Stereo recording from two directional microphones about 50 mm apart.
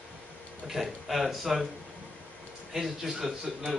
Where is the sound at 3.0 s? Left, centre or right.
Centre.